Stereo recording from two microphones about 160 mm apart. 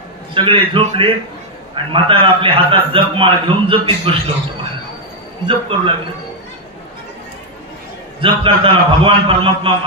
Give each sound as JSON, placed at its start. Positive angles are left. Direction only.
{"t": 0.3, "sound": "a man's voice", "side_deg": -35}
{"t": 5.5, "sound": "a man's voice", "side_deg": -35}
{"t": 8.2, "sound": "a man's voice", "side_deg": -35}